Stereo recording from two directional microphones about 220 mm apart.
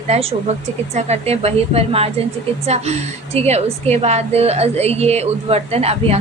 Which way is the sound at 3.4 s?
30° right (ahead or behind).